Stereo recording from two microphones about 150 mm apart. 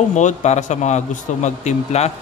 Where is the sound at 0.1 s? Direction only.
55° left (ahead or behind).